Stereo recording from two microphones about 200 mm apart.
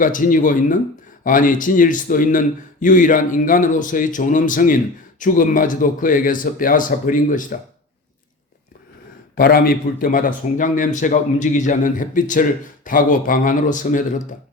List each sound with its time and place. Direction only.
0.0 s speech: 40° left (ahead or behind)
9.3 s speech: 50° left (ahead or behind)